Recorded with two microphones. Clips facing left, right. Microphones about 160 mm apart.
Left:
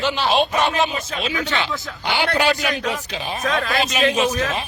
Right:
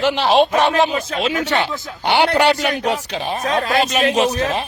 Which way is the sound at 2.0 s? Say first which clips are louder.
Right 5 dB; 70° right (ahead or behind).